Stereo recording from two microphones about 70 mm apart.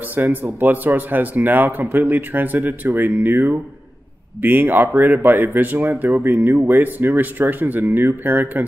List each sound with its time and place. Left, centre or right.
0.1 s speech: right